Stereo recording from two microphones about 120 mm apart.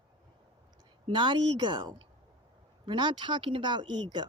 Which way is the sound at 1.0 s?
40° right (ahead or behind).